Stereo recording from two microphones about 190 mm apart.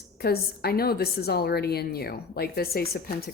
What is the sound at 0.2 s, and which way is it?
A woman's voice, 55° left (ahead or behind).